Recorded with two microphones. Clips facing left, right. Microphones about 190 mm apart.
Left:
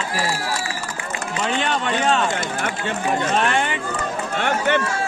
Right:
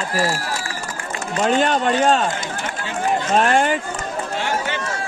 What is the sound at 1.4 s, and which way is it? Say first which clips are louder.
Speech: right 6 dB; 45° right (ahead or behind).